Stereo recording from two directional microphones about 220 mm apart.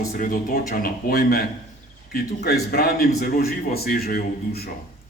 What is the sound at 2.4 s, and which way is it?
A man's voice, 45° left (ahead or behind).